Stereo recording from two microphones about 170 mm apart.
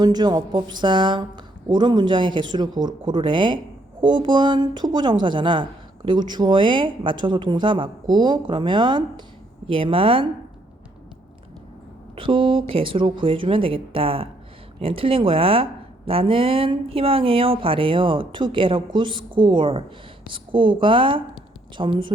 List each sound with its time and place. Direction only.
0.0 s speech: 25° right (ahead or behind)
12.1 s speech: 30° right (ahead or behind)